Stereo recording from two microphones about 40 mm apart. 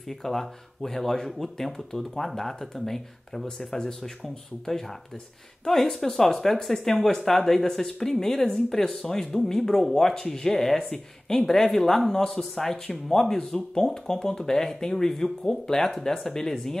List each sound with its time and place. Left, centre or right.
0.1 s speech: centre